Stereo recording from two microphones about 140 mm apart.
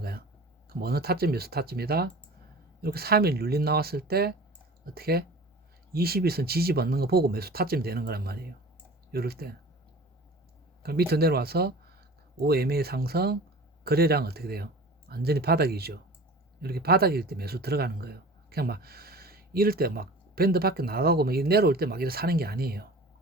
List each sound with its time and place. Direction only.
0.7 s speech: 90° right
10.8 s speech: 90° right
16.8 s speech: 90° right